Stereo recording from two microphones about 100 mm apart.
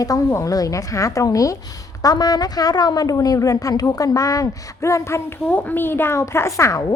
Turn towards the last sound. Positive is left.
turn(degrees=30)  # may be behind; listen again after turning